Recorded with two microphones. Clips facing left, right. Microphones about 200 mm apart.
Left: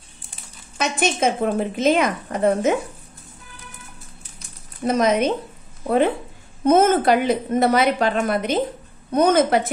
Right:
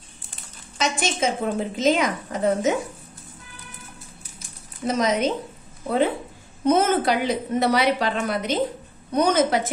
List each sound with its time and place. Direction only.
0.7 s a woman's voice: 60° left (ahead or behind)
4.8 s a woman's voice: 55° left (ahead or behind)
6.6 s a woman's voice: 50° left (ahead or behind)